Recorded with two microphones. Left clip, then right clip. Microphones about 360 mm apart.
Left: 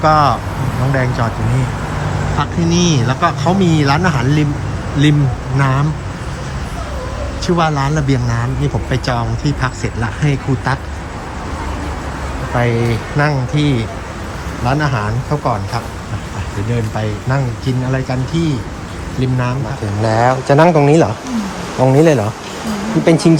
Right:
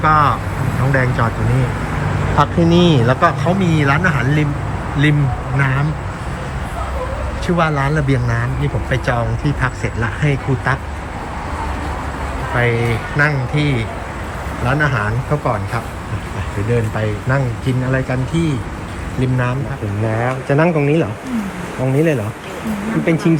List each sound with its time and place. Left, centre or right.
0.0 s speech: centre
2.4 s speech: centre
5.5 s speech: centre
7.4 s speech: centre
12.5 s speech: centre